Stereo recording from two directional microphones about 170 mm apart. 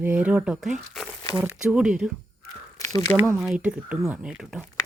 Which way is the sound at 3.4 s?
5° right (ahead or behind).